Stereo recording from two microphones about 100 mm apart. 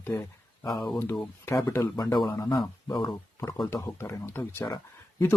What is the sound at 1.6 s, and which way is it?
Speech, 30° left (ahead or behind).